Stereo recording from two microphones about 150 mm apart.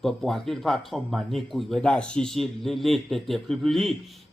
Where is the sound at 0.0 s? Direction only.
Centre (ahead or behind).